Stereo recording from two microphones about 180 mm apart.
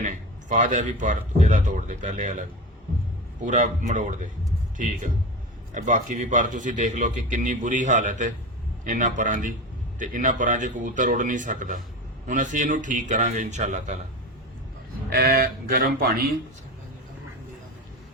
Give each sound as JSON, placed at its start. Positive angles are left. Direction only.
{"t": 0.0, "sound": "a man's voice", "side_deg": -45}
{"t": 3.4, "sound": "a man's voice", "side_deg": -45}
{"t": 15.1, "sound": "speech", "side_deg": -55}